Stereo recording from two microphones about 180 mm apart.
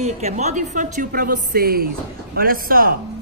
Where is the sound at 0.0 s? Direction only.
40° right (ahead or behind).